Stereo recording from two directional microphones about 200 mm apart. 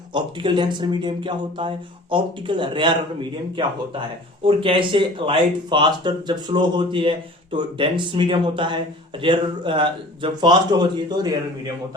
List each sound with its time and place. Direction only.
0.1 s speech: 25° right (ahead or behind)